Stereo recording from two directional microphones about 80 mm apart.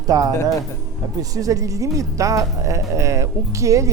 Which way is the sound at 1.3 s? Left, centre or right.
Right.